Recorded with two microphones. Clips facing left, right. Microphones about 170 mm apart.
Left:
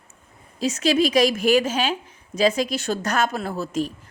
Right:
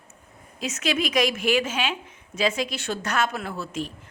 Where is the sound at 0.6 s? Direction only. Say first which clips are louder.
Left 7 dB; 35° left (ahead or behind).